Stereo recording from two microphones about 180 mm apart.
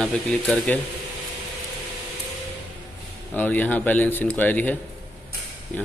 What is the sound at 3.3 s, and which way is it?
Speech, 10° left (ahead or behind).